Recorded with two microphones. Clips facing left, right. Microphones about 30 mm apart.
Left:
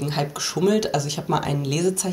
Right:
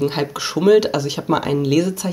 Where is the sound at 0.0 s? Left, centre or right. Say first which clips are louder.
Right 5 dB; centre.